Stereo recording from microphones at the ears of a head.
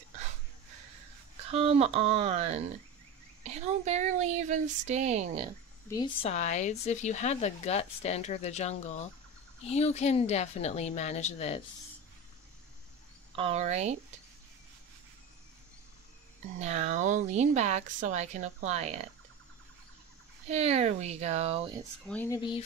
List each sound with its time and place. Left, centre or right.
0.1 s a sound: right
3.4 s speech: right
6.1 s speech: left
13.3 s speech: right
16.3 s speech: right
20.4 s speech: right